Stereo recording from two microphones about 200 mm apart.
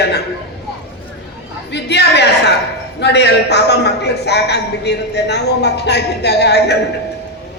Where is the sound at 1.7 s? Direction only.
55° left (ahead or behind).